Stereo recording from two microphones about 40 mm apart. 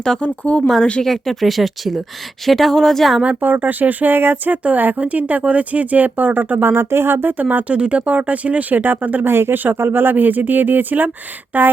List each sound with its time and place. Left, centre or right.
0.2 s speech: left
1.0 s speech: centre
3.2 s speech: right
4.5 s speech: right
6.7 s speech: right
7.3 s speech: right
7.7 s speech: right
8.8 s speech: right
9.2 s speech: right